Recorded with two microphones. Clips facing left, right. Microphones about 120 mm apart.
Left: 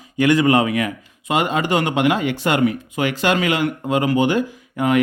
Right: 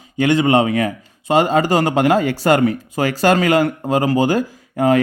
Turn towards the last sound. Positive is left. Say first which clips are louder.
# right 3 dB
turn(degrees=-35)  # may be behind; listen again after turning